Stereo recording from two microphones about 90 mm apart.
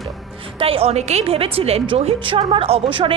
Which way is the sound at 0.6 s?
90° right.